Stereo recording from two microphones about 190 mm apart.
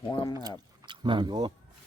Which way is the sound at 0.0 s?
25° left (ahead or behind).